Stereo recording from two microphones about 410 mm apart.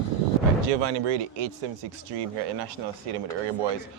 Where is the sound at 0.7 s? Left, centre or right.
Right.